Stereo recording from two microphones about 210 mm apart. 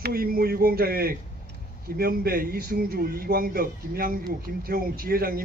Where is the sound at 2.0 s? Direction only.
45° right (ahead or behind).